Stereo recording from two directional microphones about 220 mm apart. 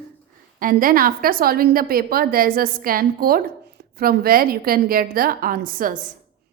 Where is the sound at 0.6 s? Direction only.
40° right (ahead or behind).